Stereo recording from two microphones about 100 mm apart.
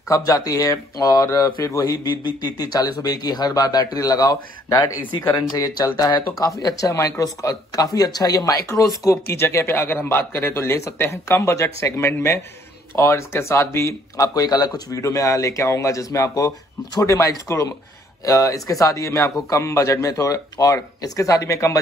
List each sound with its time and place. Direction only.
0.1 s speech: 35° left (ahead or behind)